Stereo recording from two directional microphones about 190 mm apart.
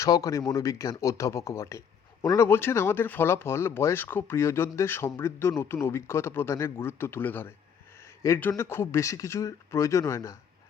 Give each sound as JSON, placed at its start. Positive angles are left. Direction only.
{"t": 0.0, "sound": "speech", "side_deg": 15}